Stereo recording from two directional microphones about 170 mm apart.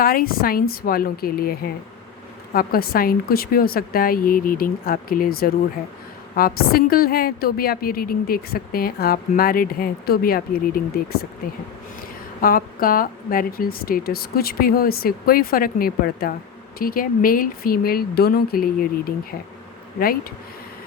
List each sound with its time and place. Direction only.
0.0 s a woman's voice: 60° left (ahead or behind)
12.4 s a woman's voice: 55° left (ahead or behind)